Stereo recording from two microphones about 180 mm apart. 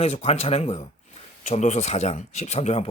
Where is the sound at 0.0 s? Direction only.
35° left (ahead or behind).